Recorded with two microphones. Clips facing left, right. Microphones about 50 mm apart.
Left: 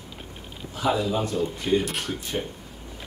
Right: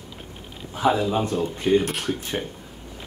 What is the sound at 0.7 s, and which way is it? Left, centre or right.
Speech, right.